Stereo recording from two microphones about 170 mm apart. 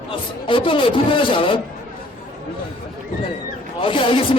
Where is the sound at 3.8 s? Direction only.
30° left (ahead or behind).